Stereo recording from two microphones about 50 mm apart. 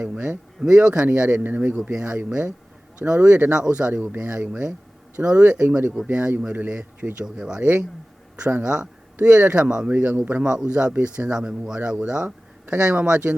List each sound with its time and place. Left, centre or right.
0.6 s speech: right
1.7 s speech: centre
2.0 s speech: right
3.5 s speech: right
4.0 s speech: right
7.3 s speech: centre
9.1 s speech: right
9.9 s speech: right
10.4 s speech: centre